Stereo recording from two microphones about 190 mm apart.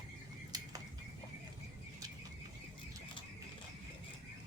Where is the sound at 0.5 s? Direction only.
20° right (ahead or behind).